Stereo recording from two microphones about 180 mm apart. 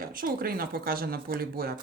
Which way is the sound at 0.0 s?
50° right (ahead or behind).